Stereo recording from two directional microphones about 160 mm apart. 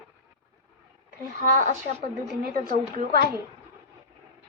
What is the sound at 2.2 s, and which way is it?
Speech, 75° right (ahead or behind).